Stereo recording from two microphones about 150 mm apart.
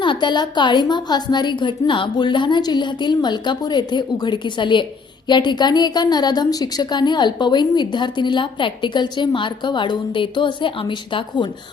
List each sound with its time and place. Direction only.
0.0 s a woman's voice: 30° left (ahead or behind)